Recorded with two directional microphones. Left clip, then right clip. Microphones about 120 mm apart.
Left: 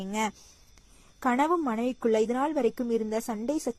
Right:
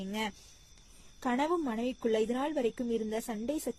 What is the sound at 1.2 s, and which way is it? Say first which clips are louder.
A woman's voice: left 6 dB; 40° left (ahead or behind).